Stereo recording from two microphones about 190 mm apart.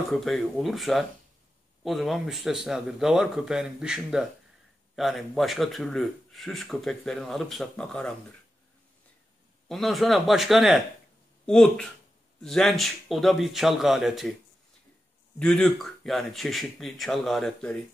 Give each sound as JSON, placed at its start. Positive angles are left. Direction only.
{"t": 0.1, "sound": "a man's voice", "side_deg": 0}
{"t": 9.7, "sound": "a man's voice", "side_deg": 0}
{"t": 15.3, "sound": "a man's voice", "side_deg": 5}